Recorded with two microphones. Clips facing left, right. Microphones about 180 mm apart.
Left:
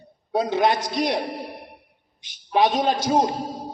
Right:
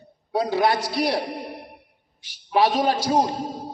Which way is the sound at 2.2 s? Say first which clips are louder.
Even; 20° left (ahead or behind).